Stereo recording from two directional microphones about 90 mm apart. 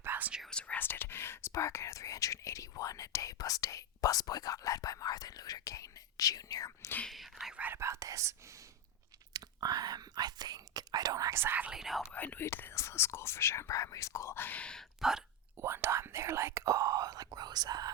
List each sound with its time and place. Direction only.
0.0 s whispering: 20° right (ahead or behind)
0.5 s speech: 20° left (ahead or behind); by 6.9 s 40° left (ahead or behind)
7.1 s speech: centre (ahead or behind)
7.5 s speech: 20° right (ahead or behind)
7.8 s speech: 35° right (ahead or behind)
9.3 s speech: 45° right (ahead or behind)
11.3 s speech: 20° right (ahead or behind)
11.7 s speech: centre (ahead or behind)
12.1 s speech: 20° left (ahead or behind)
15.5 s speech: 25° right (ahead or behind); by 17.9 s 45° right (ahead or behind)